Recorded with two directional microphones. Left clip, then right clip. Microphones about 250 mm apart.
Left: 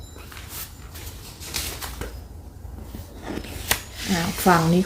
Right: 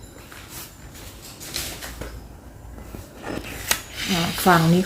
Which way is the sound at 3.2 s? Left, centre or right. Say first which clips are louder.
Right 2 dB; centre.